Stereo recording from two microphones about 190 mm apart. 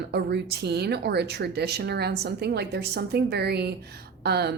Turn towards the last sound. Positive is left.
turn(degrees=-60)  # may be behind; listen again after turning